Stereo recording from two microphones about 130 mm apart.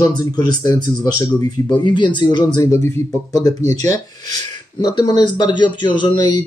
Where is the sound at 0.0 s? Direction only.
30° left (ahead or behind).